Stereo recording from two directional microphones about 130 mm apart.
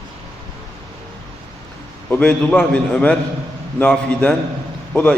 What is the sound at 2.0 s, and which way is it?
A man's voice, 10° left (ahead or behind).